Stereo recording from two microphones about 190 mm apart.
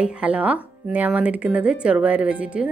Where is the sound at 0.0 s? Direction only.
5° right (ahead or behind).